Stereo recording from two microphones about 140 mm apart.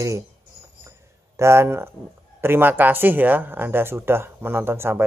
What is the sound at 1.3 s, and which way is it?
Speech, 20° right (ahead or behind).